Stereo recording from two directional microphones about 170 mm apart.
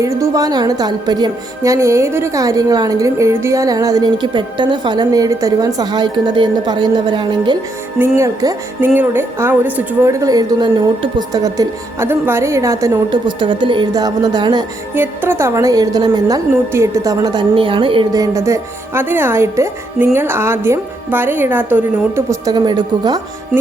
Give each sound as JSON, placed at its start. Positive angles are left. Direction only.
{"t": 0.0, "sound": "a woman's voice", "side_deg": -20}
{"t": 7.9, "sound": "a woman's voice", "side_deg": -15}
{"t": 14.9, "sound": "a woman's voice", "side_deg": -10}